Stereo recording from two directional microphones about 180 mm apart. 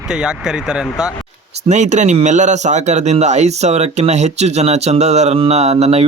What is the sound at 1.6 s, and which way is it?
Speech, 40° right (ahead or behind).